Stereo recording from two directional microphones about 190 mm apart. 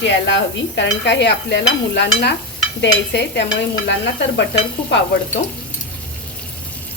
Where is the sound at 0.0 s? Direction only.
70° left (ahead or behind).